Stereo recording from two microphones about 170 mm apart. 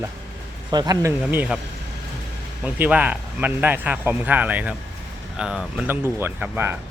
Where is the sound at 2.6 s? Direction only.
10° right (ahead or behind).